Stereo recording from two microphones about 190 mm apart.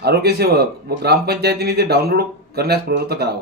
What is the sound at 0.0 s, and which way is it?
A man's voice, 60° right (ahead or behind).